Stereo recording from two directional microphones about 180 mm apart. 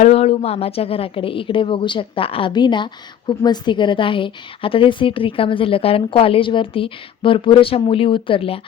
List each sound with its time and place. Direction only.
0.0 s a woman's voice: 35° left (ahead or behind)